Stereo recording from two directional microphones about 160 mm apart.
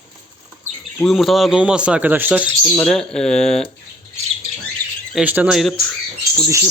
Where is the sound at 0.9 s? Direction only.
Centre (ahead or behind).